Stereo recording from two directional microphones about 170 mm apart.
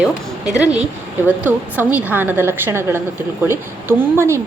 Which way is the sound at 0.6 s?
5° right (ahead or behind).